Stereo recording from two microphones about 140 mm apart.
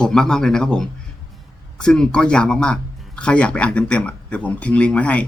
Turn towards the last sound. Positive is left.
turn(degrees=10)  # may be behind; listen again after turning